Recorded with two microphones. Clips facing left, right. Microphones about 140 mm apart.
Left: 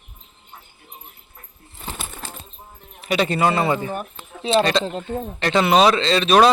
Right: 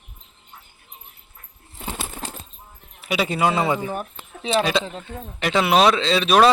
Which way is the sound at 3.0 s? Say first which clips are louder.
Left 2 dB; 5° right (ahead or behind).